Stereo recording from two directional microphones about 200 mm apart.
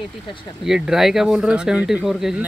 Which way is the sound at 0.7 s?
Centre (ahead or behind).